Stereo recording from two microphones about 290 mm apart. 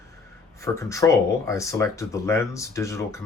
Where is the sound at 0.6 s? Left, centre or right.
Centre.